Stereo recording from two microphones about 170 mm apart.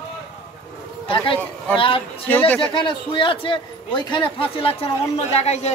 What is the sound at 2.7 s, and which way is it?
A man's voice, 30° left (ahead or behind).